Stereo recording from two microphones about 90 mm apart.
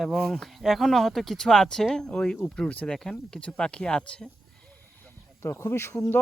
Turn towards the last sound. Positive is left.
turn(degrees=25)  # may be behind; listen again after turning